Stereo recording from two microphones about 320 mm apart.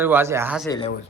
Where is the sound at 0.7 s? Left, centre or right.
Centre.